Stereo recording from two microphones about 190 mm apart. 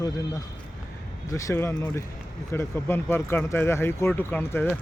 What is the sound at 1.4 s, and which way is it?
Speech, 15° left (ahead or behind).